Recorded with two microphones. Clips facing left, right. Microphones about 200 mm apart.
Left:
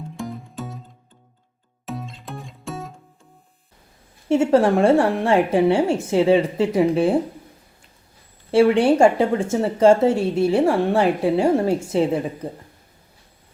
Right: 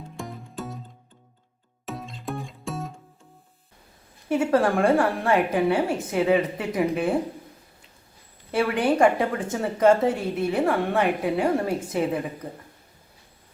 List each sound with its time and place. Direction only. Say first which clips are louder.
0.2 s music: left 3 dB; centre (ahead or behind)
1.9 s music: even; centre (ahead or behind)
4.3 s speech: left 5 dB; 25° left (ahead or behind)
8.5 s speech: left 7 dB; 30° left (ahead or behind)